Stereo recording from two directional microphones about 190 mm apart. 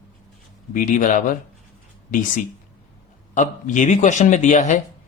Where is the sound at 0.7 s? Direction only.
45° left (ahead or behind).